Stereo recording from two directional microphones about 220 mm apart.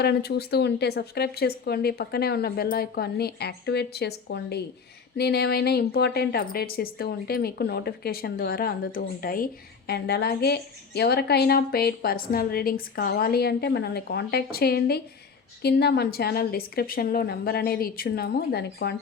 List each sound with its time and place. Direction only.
0.0 s a woman's voice: 45° left (ahead or behind)